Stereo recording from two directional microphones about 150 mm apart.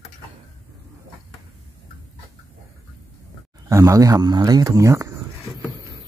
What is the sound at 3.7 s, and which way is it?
A man's voice, 20° right (ahead or behind).